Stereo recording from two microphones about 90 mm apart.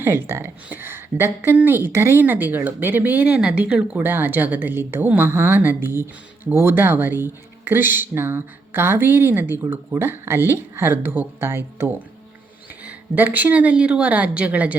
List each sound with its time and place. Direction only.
0.0 s a woman's voice: 25° right (ahead or behind)
4.0 s a woman's voice: 25° right (ahead or behind)